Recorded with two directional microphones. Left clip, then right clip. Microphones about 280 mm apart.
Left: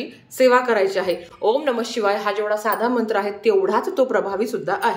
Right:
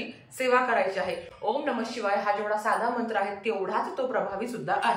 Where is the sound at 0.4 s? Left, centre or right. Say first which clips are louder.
Left 8 dB; left.